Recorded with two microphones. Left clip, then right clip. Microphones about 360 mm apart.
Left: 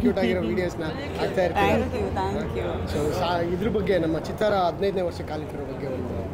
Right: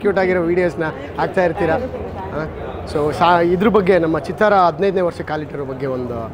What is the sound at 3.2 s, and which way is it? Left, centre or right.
Speech, right.